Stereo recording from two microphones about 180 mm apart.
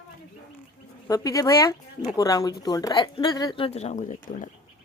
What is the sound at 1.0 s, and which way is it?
A woman's voice, 20° left (ahead or behind).